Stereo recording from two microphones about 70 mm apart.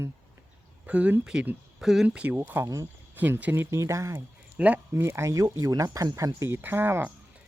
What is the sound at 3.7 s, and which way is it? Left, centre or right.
Speech, right.